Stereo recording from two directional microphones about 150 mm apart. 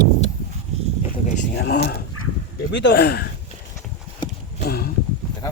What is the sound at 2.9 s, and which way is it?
Speech, 90° left.